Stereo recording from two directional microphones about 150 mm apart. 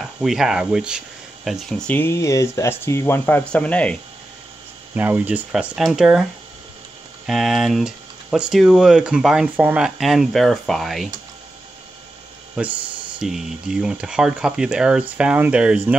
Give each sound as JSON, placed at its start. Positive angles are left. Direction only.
{"t": 0.2, "sound": "speech", "side_deg": 0}
{"t": 4.9, "sound": "speech", "side_deg": -10}
{"t": 7.2, "sound": "speech", "side_deg": 0}
{"t": 13.2, "sound": "speech", "side_deg": -5}